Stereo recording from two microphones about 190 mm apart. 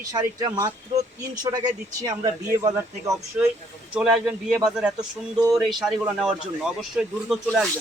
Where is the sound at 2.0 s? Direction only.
20° right (ahead or behind).